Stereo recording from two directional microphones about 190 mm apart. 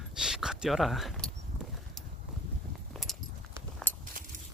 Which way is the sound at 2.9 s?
Centre (ahead or behind).